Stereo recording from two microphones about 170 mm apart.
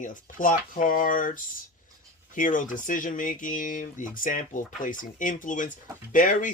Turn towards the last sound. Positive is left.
turn(degrees=50)  # may be behind; listen again after turning